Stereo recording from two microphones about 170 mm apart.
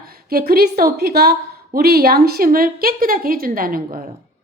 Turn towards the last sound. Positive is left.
turn(degrees=-55)  # may be behind; listen again after turning